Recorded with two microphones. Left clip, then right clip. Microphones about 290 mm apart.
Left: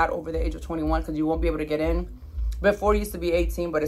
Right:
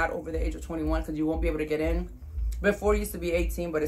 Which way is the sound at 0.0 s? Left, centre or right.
Centre.